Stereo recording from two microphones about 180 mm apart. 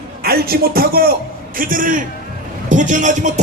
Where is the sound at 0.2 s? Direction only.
60° right (ahead or behind).